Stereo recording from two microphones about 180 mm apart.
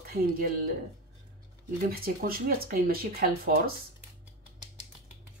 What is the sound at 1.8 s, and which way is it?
Speech, 55° right (ahead or behind).